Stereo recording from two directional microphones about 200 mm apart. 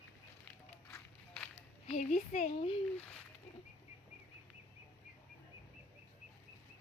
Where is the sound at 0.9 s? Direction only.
5° left (ahead or behind).